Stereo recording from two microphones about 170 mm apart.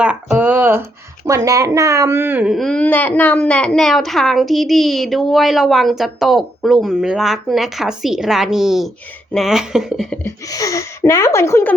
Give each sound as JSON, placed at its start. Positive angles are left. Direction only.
{"t": 0.0, "sound": "a sound", "side_deg": -10}
{"t": 1.2, "sound": "speech", "side_deg": -20}
{"t": 10.2, "sound": "speech", "side_deg": 20}